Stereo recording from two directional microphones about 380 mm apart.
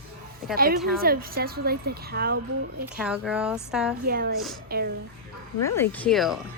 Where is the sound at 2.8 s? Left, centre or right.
Centre.